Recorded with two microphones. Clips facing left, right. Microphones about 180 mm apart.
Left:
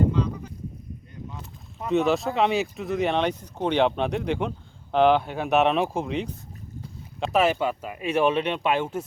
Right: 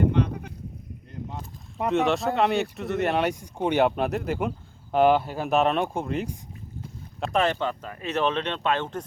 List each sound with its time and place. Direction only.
0.0 s sheep: 60° right (ahead or behind)
1.9 s speech: centre (ahead or behind)
7.3 s speech: 10° left (ahead or behind)